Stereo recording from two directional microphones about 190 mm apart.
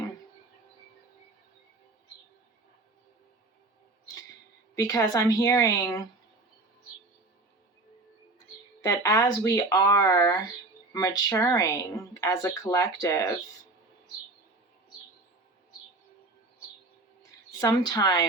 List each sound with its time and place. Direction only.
4.7 s speech: 15° left (ahead or behind)
8.8 s speech: 15° left (ahead or behind)
17.6 s a woman's voice: 20° left (ahead or behind)